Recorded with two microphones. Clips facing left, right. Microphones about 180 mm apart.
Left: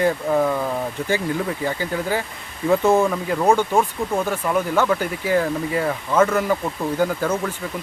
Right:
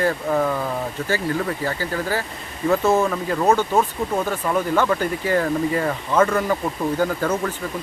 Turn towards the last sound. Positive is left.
turn(degrees=10)  # may be behind; listen again after turning